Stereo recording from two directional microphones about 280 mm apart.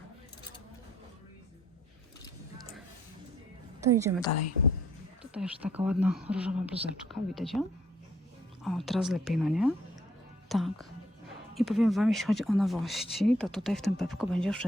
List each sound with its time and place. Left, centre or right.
3.8 s a woman's voice: centre
4.3 s speech: left
5.2 s speech: centre
8.6 s speech: centre